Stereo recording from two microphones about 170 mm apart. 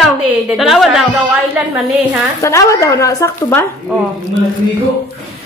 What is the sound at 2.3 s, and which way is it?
Speech, 15° left (ahead or behind).